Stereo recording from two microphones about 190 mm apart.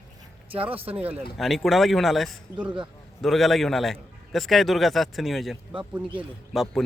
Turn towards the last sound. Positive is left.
turn(degrees=0)  # may be behind; listen again after turning